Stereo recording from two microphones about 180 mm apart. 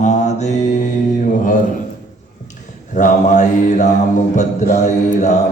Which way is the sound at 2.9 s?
45° left (ahead or behind).